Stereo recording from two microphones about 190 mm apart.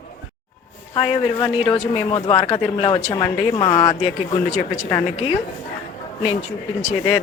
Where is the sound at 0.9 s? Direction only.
30° left (ahead or behind).